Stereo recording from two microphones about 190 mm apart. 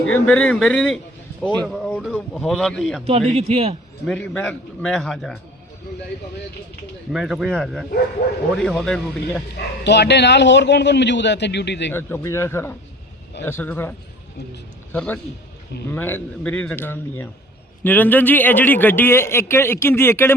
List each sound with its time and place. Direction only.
0.0 s a man's voice: 5° left (ahead or behind)
3.0 s speech: 30° right (ahead or behind)
4.0 s a man's voice: 5° left (ahead or behind)
7.1 s a man's voice: centre (ahead or behind)
8.2 s a man's voice: 60° left (ahead or behind)
8.5 s a man's voice: centre (ahead or behind)
9.8 s a man's voice: 65° left (ahead or behind)
11.9 s a man's voice: 10° left (ahead or behind)
14.9 s a man's voice: 10° left (ahead or behind)